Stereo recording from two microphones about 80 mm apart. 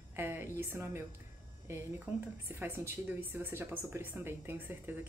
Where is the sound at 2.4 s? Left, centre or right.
Right.